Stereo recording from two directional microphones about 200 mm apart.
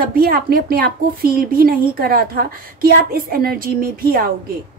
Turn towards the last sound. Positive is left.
turn(degrees=-45)  # may be behind; listen again after turning